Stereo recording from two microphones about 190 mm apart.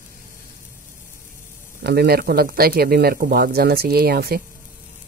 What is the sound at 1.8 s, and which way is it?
Speech, 55° right (ahead or behind).